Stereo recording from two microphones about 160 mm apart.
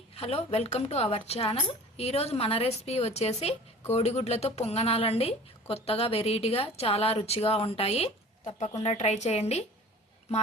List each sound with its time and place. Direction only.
0.1 s a woman's voice: 40° left (ahead or behind)